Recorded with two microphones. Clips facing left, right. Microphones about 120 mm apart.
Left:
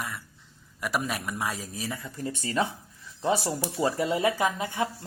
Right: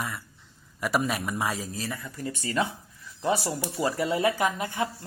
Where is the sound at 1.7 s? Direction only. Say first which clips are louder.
Even; 15° left (ahead or behind).